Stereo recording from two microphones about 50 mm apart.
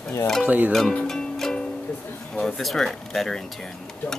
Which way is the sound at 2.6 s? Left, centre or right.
Centre.